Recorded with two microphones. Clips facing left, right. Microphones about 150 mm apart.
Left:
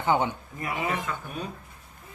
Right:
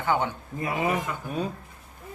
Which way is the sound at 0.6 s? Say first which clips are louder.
Right 4 dB; 20° right (ahead or behind).